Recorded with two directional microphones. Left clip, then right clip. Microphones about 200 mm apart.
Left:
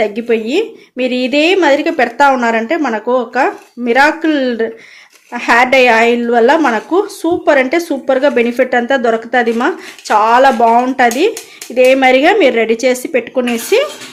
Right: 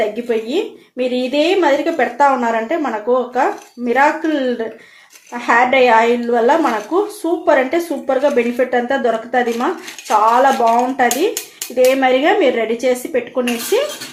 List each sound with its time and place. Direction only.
0.3 s speech: 55° left (ahead or behind)